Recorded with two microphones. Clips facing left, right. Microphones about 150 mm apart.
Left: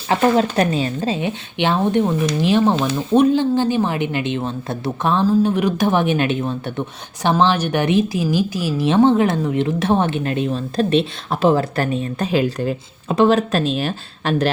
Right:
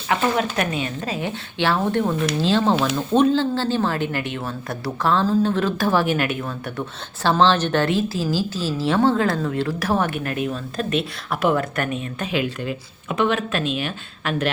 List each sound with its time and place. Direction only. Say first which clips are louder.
0.1 s speech: left 5 dB; 30° left (ahead or behind)